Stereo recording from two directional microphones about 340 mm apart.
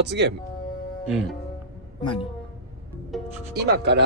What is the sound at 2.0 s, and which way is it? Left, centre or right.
Speech, centre.